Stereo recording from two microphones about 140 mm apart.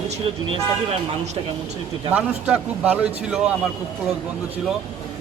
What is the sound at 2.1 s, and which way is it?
A man's voice, 10° right (ahead or behind).